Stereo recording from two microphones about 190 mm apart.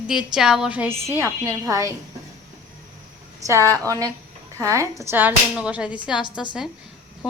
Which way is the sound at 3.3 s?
15° right (ahead or behind).